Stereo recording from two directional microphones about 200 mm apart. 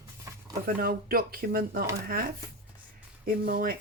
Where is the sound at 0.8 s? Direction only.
50° right (ahead or behind).